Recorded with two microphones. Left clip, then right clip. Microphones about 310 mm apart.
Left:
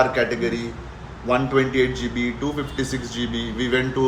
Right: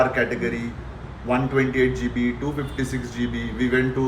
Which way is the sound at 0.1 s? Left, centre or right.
Centre.